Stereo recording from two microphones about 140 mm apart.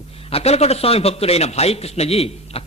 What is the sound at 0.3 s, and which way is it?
A man's voice, 45° left (ahead or behind).